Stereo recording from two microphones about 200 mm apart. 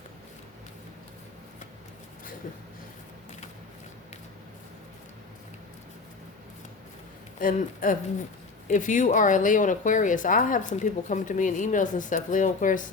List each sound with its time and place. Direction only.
7.3 s speech: 45° left (ahead or behind)